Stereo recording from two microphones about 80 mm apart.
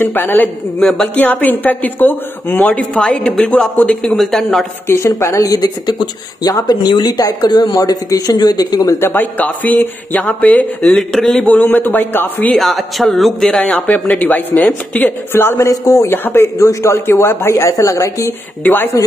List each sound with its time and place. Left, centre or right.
0.0 s speech: left
0.8 s speech: centre
1.1 s speech: left
2.7 s speech: centre
4.2 s speech: centre
4.8 s a woman's voice: left
5.5 s speech: left
8.9 s speech: left
11.0 s speech: centre
11.4 s speech: left
12.5 s speech: centre
13.8 s a woman's voice: left
18.6 s speech: left